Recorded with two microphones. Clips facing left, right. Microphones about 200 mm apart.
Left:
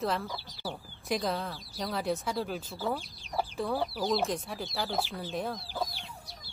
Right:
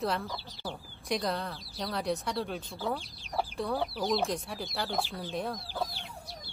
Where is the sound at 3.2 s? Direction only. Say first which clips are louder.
Even; centre (ahead or behind).